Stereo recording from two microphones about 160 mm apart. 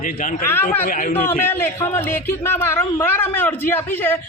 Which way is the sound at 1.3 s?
15° left (ahead or behind).